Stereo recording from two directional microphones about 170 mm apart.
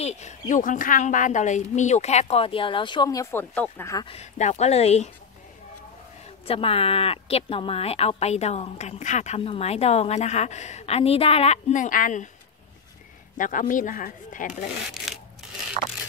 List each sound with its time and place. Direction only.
0.0 s a woman's voice: 45° left (ahead or behind); by 4.0 s 15° left (ahead or behind)
4.0 s a woman's voice: 35° left (ahead or behind)
6.2 s a woman's voice: 35° left (ahead or behind); by 12.3 s 50° left (ahead or behind)
13.4 s speech: 50° left (ahead or behind)
15.1 s a sound: centre (ahead or behind)